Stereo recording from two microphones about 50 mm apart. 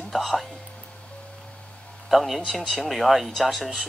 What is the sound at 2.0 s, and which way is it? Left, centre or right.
Speech, centre.